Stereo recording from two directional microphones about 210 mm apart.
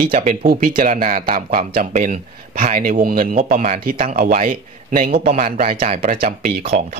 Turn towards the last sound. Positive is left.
turn(degrees=-40)  # may be behind; listen again after turning